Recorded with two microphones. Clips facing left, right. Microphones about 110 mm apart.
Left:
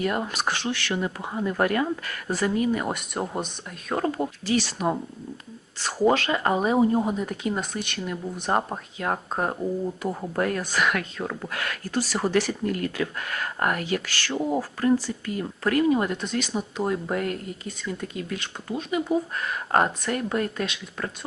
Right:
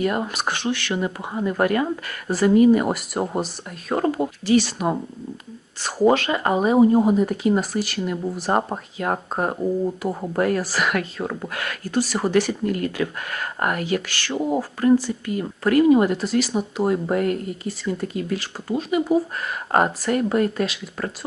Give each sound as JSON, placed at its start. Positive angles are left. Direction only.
{"t": 0.0, "sound": "speech", "side_deg": -15}
{"t": 2.3, "sound": "speech", "side_deg": -5}
{"t": 11.3, "sound": "speech", "side_deg": -20}
{"t": 15.7, "sound": "speech", "side_deg": -5}